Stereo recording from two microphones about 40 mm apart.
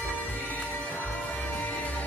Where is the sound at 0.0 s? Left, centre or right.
Left.